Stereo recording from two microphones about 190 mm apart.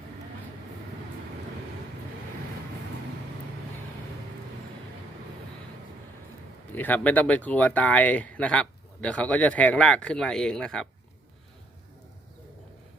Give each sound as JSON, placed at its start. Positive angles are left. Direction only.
{"t": 6.7, "sound": "speech", "side_deg": 10}